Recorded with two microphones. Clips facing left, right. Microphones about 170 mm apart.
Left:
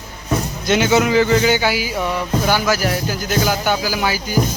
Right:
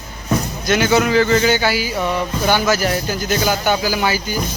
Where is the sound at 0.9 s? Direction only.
15° left (ahead or behind).